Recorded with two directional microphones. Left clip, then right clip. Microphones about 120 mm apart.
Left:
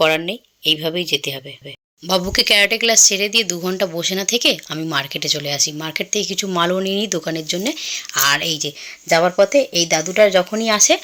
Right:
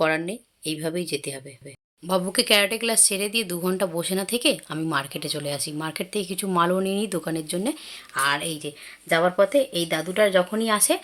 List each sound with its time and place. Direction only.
0.0 s speech: 5° left (ahead or behind)
2.0 s speech: 25° left (ahead or behind)